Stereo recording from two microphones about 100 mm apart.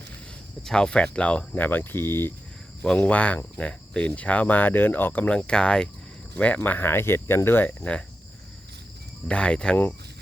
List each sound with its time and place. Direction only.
0.6 s cricket: 5° left (ahead or behind); by 2.3 s 25° left (ahead or behind)
2.8 s cricket: 10° left (ahead or behind)
6.3 s speech: 15° left (ahead or behind)
9.2 s cricket: 10° left (ahead or behind)